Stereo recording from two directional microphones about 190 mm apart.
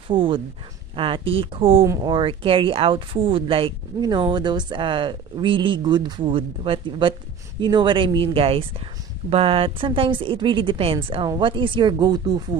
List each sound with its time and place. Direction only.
0.1 s speech: 25° right (ahead or behind)